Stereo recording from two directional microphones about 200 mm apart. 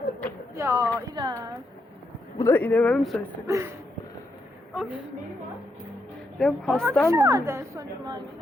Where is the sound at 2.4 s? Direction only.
10° left (ahead or behind).